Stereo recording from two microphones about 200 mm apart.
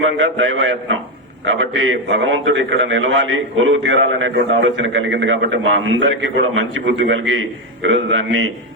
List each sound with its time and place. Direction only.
0.2 s a man's voice: 70° right (ahead or behind)